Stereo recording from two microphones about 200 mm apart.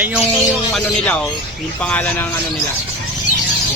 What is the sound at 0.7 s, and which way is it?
Speech, 5° left (ahead or behind).